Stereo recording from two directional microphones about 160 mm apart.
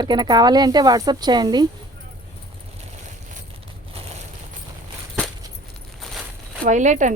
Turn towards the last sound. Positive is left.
turn(degrees=-50)  # may be behind; listen again after turning